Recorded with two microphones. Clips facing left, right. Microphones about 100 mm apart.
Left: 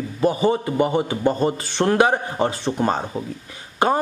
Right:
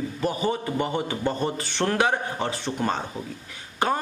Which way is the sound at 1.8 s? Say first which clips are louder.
Left 6 dB; 30° left (ahead or behind).